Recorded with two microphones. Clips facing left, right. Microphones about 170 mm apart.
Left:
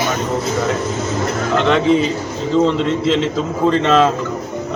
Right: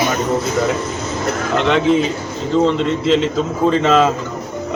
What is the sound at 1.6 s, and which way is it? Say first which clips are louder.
A man's voice: left 1 dB; centre (ahead or behind).